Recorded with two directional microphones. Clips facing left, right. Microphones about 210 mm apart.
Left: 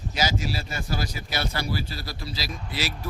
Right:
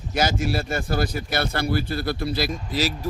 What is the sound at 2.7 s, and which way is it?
Speech, 40° right (ahead or behind).